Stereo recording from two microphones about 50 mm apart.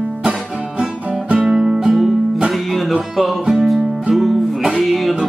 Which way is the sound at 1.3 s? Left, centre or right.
Centre.